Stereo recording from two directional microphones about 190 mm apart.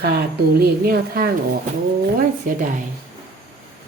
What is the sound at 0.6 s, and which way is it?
Speech, 50° right (ahead or behind).